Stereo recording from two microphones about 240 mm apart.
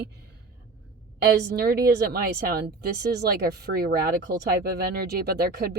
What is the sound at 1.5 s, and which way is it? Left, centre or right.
A woman's voice, right.